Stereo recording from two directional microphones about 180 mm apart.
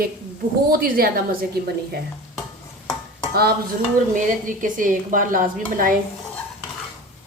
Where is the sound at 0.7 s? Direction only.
55° right (ahead or behind).